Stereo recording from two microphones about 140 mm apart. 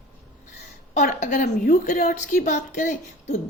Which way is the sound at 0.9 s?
60° left (ahead or behind).